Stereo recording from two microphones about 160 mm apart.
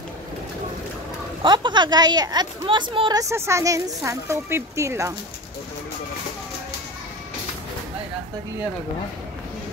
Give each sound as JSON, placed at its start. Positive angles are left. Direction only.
{"t": 1.4, "sound": "a woman's voice", "side_deg": -30}
{"t": 3.2, "sound": "speech", "side_deg": -15}